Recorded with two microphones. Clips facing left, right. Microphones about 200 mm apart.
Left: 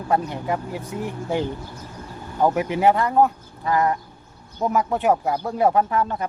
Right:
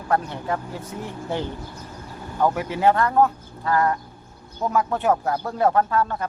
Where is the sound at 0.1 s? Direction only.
15° left (ahead or behind).